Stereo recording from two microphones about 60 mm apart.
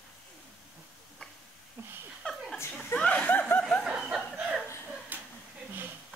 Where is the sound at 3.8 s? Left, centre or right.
Centre.